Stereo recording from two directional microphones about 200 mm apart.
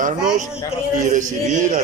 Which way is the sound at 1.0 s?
40° right (ahead or behind).